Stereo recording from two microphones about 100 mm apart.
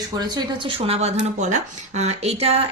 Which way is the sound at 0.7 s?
80° right.